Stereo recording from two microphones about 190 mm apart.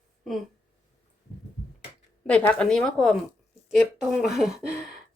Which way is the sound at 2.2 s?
5° left (ahead or behind).